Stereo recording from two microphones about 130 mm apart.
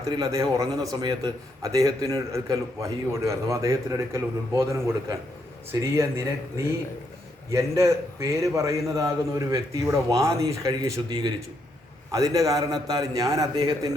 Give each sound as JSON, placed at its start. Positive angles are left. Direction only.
{"t": 0.0, "sound": "a man's voice", "side_deg": -25}
{"t": 7.5, "sound": "a man's voice", "side_deg": -25}